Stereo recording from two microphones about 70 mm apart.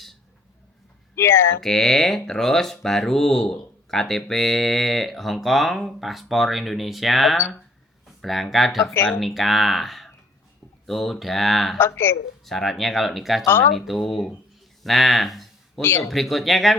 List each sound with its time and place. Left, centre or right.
1.1 s speech: left
1.6 s speech: centre
11.8 s speech: left
12.5 s speech: centre
13.4 s speech: left
13.7 s speech: centre
15.8 s speech: left
16.0 s speech: centre